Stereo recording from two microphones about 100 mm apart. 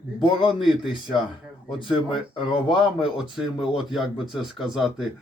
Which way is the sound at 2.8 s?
5° right (ahead or behind).